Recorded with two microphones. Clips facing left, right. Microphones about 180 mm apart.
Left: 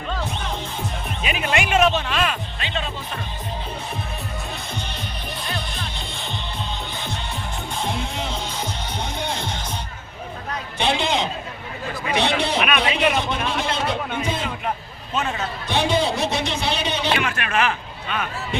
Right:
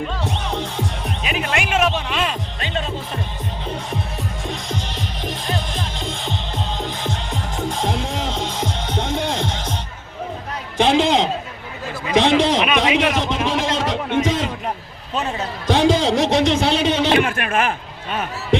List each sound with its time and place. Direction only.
0.3 s music: 80° right
1.2 s speech: 5° left (ahead or behind); by 2.3 s 20° right (ahead or behind)
2.6 s speech: 45° right (ahead or behind)
4.7 s music: 90° right
10.8 s a sound: 90° right
14.2 s music: 90° right
15.6 s a man's voice: 90° right
17.1 s a sound: 50° right (ahead or behind)